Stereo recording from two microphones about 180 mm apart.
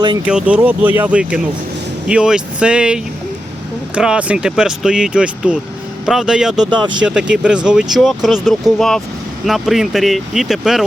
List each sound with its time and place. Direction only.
0.3 s speech: 5° right (ahead or behind)
6.7 s speech: 25° right (ahead or behind)
7.0 s speech: 5° right (ahead or behind)